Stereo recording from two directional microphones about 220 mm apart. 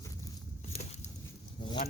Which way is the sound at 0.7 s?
30° left (ahead or behind).